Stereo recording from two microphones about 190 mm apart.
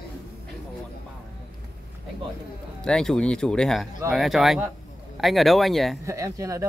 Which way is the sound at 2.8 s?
5° left (ahead or behind).